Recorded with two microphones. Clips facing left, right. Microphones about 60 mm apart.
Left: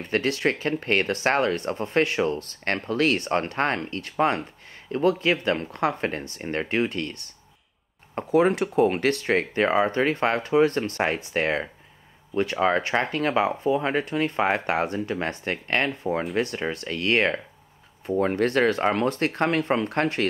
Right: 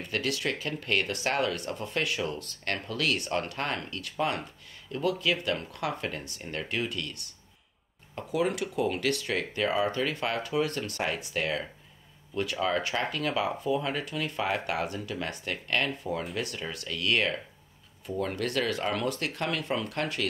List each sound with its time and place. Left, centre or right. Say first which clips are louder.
0.0 s speech: left 7 dB; left